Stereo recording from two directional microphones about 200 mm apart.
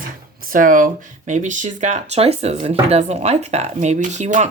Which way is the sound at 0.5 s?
40° right (ahead or behind).